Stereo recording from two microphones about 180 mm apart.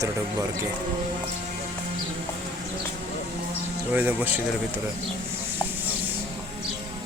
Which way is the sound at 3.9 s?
10° right (ahead or behind).